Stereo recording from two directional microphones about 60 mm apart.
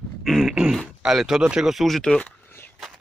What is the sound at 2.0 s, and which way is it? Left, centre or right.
Speech, centre.